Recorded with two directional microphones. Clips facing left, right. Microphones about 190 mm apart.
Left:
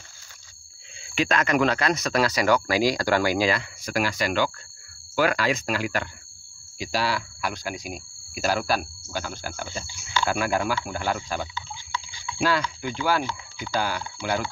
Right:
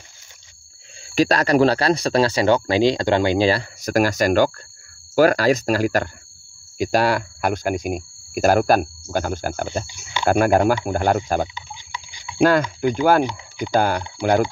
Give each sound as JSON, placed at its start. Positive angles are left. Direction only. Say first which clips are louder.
{"t": 0.9, "sound": "speech", "louder": "right 6 dB", "side_deg": -40}
{"t": 11.5, "sound": "a sound", "louder": "left 1 dB", "side_deg": -15}
{"t": 12.4, "sound": "speech", "louder": "right 8 dB", "side_deg": -50}